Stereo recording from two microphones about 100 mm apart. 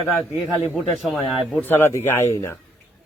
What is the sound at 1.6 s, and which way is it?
Speech, 25° left (ahead or behind).